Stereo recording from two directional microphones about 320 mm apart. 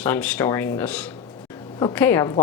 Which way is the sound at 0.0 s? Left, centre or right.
Centre.